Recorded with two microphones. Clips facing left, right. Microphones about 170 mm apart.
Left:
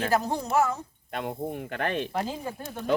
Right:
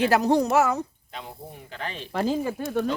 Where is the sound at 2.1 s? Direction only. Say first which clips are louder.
Right 6 dB; 90° right.